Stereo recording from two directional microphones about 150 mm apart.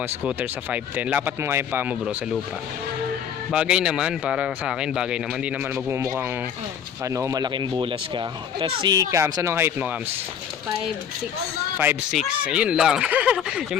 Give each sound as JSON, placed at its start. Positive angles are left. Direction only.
{"t": 0.0, "sound": "speech", "side_deg": -10}
{"t": 3.5, "sound": "speech", "side_deg": -5}
{"t": 5.9, "sound": "speech", "side_deg": -20}
{"t": 12.1, "sound": "speech", "side_deg": -5}